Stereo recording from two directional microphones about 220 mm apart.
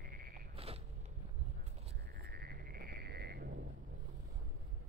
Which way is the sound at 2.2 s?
45° right (ahead or behind).